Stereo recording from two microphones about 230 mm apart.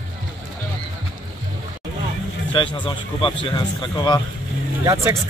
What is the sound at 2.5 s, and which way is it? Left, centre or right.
Speech, left.